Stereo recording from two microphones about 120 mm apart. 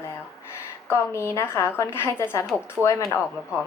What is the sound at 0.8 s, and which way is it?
Speech, 25° left (ahead or behind).